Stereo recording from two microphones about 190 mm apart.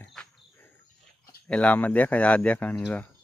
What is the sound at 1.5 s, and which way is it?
Speech, 5° left (ahead or behind).